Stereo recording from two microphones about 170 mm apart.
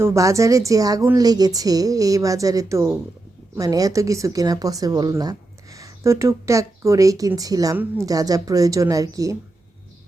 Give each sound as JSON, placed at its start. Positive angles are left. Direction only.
{"t": 0.0, "sound": "speech", "side_deg": -15}